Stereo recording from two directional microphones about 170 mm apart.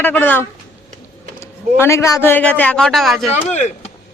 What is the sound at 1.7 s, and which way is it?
Speech, 15° left (ahead or behind).